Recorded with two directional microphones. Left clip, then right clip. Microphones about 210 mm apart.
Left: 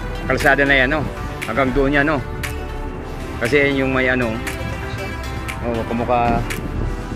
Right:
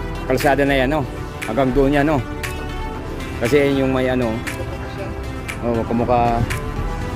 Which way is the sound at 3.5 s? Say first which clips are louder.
Even; 15° right (ahead or behind).